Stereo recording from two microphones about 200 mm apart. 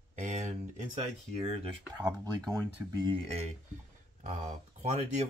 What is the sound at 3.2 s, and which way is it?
Speech, 30° right (ahead or behind).